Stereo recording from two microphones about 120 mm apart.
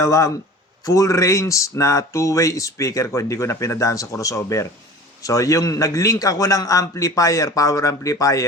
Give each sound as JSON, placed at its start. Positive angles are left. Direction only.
{"t": 0.0, "sound": "speech", "side_deg": 25}